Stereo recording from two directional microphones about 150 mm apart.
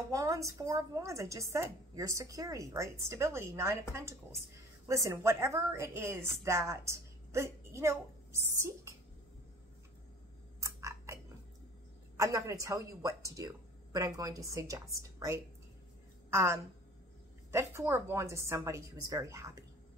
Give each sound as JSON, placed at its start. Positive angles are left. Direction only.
{"t": 0.1, "sound": "speech", "side_deg": -20}
{"t": 4.8, "sound": "a woman's voice", "side_deg": -20}
{"t": 10.6, "sound": "chewing", "side_deg": -20}
{"t": 12.2, "sound": "a woman's voice", "side_deg": -20}